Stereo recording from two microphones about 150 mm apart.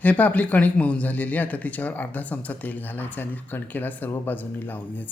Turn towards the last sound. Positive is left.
turn(degrees=10)  # may be behind; listen again after turning